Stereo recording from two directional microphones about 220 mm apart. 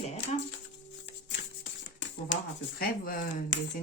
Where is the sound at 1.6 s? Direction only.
55° left (ahead or behind).